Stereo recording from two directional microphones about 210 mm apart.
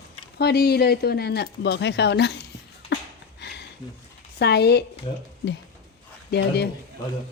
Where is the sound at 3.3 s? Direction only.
55° left (ahead or behind).